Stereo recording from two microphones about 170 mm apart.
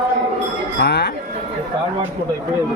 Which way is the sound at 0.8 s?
80° left.